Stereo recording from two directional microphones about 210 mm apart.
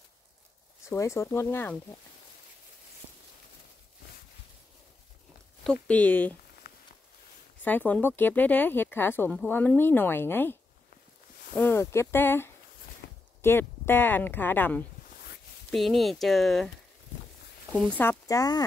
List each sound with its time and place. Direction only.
0.8 s speech: 15° left (ahead or behind)
5.6 s speech: 5° left (ahead or behind)
6.7 s a sound: 45° left (ahead or behind)
7.6 s speech: 10° left (ahead or behind)
13.0 s a sound: 50° left (ahead or behind)
13.4 s speech: 10° left (ahead or behind)
17.7 s speech: 5° left (ahead or behind)